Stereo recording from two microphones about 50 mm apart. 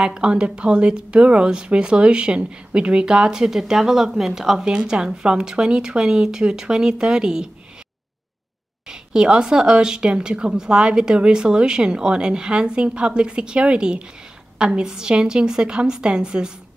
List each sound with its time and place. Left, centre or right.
0.0 s speech: centre
4.6 s speech: centre
8.8 s speech: centre